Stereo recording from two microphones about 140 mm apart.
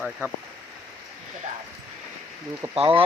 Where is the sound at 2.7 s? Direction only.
40° right (ahead or behind).